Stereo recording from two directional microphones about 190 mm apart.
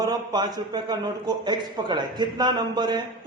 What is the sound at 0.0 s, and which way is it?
A man's voice, 20° right (ahead or behind).